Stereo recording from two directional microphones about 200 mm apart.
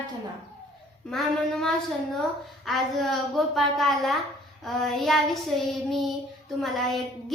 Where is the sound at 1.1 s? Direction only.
Centre (ahead or behind).